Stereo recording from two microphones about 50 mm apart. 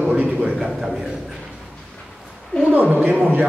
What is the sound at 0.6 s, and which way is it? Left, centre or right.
Speech, centre.